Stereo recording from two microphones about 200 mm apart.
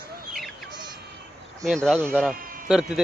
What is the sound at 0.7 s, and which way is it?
Bleat, 20° right (ahead or behind).